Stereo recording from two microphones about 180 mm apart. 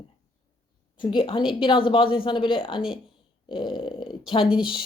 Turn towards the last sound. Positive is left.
turn(degrees=-5)  # may be behind; listen again after turning